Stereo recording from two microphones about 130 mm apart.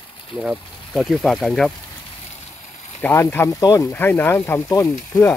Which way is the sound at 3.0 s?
15° left (ahead or behind).